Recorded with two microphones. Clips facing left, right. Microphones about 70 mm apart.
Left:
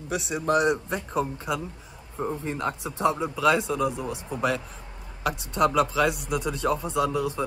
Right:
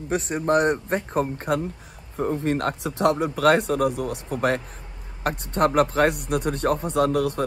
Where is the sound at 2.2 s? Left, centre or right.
Right.